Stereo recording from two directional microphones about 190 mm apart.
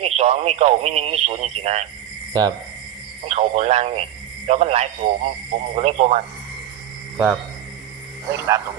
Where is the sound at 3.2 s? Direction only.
35° right (ahead or behind).